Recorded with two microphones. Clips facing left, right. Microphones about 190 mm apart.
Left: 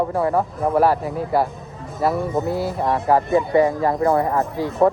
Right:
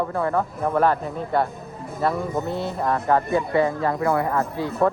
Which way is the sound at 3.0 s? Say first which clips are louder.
Left 4 dB; 15° left (ahead or behind).